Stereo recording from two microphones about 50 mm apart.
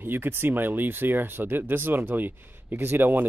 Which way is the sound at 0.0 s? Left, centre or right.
Right.